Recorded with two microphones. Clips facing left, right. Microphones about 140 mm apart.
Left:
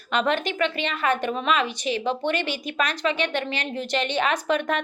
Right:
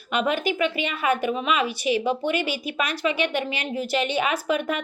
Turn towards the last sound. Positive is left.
turn(degrees=-5)  # may be behind; listen again after turning